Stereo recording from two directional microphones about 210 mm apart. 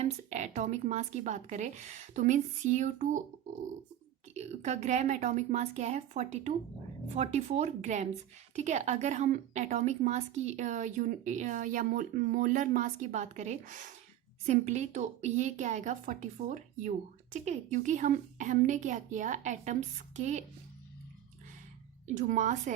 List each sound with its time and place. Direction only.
0.0 s a woman's voice: 35° right (ahead or behind)
22.0 s a woman's voice: 35° right (ahead or behind)